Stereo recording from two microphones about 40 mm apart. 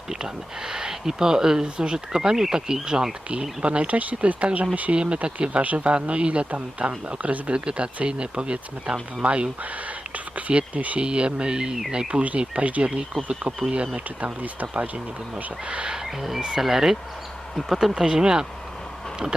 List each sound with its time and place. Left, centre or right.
0.1 s speech: centre
3.6 s speech: right
11.0 s speech: right
12.4 s speech: right
13.9 s speech: right
14.7 s speech: right
16.0 s speech: centre